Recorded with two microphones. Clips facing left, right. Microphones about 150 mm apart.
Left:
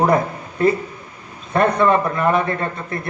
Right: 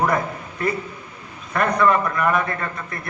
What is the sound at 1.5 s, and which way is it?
A man's voice, 30° left (ahead or behind).